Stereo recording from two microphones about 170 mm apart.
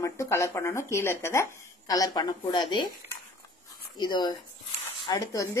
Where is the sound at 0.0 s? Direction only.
15° left (ahead or behind).